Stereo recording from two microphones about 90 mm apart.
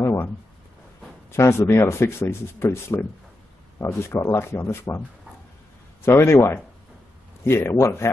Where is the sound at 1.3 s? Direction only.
30° left (ahead or behind).